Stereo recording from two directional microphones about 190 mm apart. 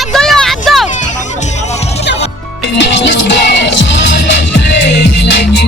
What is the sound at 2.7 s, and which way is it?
Music, 70° left (ahead or behind).